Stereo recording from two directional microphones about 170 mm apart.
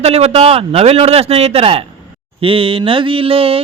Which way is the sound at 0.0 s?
35° right (ahead or behind).